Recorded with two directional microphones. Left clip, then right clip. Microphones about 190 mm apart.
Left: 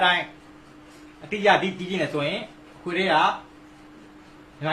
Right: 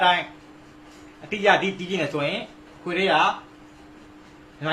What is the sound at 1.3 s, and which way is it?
A man's voice, 10° right (ahead or behind).